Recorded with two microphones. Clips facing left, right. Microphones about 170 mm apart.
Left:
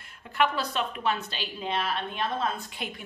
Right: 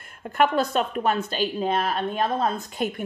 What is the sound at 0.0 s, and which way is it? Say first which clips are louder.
Speech: right 5 dB; 50° right (ahead or behind).